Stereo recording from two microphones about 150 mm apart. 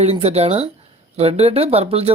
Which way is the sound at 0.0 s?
45° right (ahead or behind).